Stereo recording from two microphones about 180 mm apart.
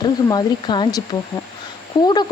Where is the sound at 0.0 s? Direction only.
25° left (ahead or behind).